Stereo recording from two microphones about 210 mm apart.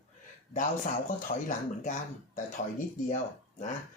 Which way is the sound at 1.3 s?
35° left (ahead or behind).